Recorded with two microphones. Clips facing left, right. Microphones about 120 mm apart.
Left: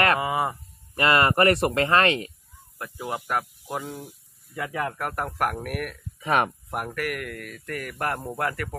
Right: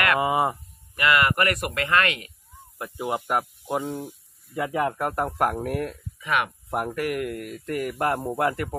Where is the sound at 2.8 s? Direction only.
20° right (ahead or behind).